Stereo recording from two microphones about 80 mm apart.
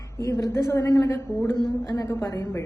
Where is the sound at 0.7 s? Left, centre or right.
Left.